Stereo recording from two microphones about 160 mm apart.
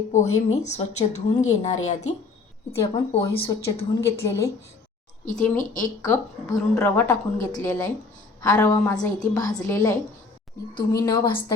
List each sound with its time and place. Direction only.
0.1 s a woman's voice: 45° left (ahead or behind)
2.7 s a woman's voice: 20° left (ahead or behind)
5.2 s a woman's voice: 50° left (ahead or behind)
6.0 s a woman's voice: 20° left (ahead or behind)
10.9 s a woman's voice: 25° left (ahead or behind)